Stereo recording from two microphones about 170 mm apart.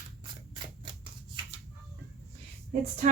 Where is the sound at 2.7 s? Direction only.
45° right (ahead or behind).